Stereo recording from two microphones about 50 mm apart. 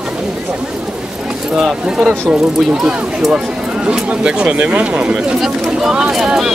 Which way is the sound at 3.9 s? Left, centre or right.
Right.